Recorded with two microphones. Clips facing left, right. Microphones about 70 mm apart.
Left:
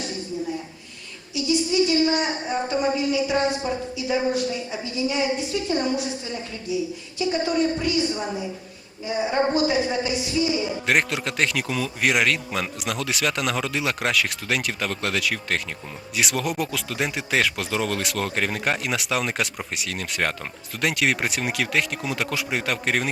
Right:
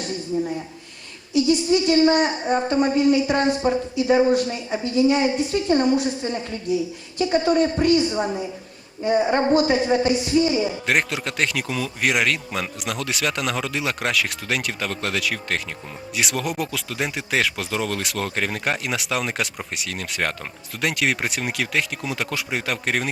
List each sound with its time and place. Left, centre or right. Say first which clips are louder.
1.3 s speech: right 5 dB; right
7.2 s speech: right 4 dB; right
9.0 s speech: right 4 dB; right
10.8 s a man's voice: even; centre